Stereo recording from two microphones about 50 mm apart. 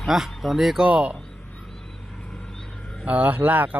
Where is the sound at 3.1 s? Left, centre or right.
Right.